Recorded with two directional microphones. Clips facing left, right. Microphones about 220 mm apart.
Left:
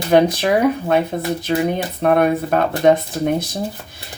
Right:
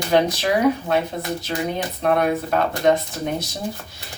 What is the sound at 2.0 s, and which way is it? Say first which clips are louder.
Speech: left 4 dB; 55° left (ahead or behind).